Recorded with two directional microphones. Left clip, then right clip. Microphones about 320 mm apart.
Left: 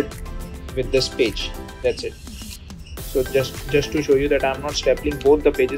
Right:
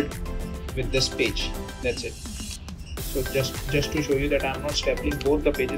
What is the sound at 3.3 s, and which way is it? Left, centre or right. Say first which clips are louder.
Speech: left 5 dB; centre.